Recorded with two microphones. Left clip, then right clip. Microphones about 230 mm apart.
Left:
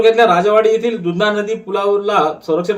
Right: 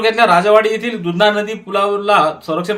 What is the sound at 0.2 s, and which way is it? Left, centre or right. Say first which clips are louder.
Speech: right 1 dB; right.